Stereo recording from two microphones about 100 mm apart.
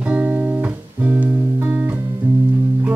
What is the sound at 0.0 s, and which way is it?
Music, 15° right (ahead or behind).